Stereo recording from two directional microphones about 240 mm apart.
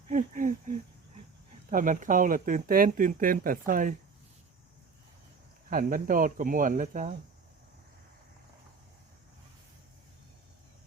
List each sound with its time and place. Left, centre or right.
0.1 s speech: right
5.7 s speech: right